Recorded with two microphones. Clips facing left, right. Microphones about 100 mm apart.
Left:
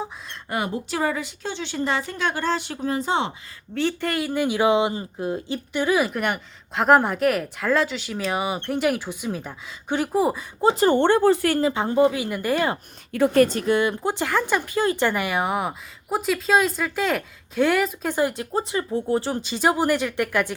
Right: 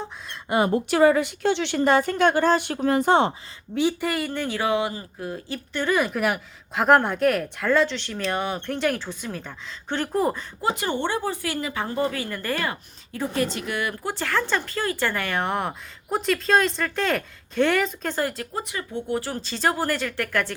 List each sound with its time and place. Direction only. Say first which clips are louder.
0.7 s a woman's voice: right 10 dB; 65° right (ahead or behind)
3.8 s speech: right 1 dB; 15° right (ahead or behind)
4.3 s speech: left 5 dB; 10° left (ahead or behind)
5.8 s speech: left 1 dB; 5° left (ahead or behind)
10.6 s speech: left 8 dB; 30° left (ahead or behind)
10.9 s speech: left 9 dB; 55° left (ahead or behind)
11.7 s speech: left 6 dB; 20° left (ahead or behind)
13.1 s a woman's voice: left 9 dB; 80° left
13.4 s speech: left 5 dB; 45° left (ahead or behind)
13.7 s speech: left 7 dB; 25° left (ahead or behind)
18.5 s speech: left 6 dB; 30° left (ahead or behind)
19.4 s speech: left 3 dB; 15° left (ahead or behind)